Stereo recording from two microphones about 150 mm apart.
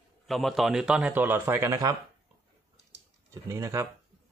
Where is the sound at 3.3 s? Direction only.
20° right (ahead or behind).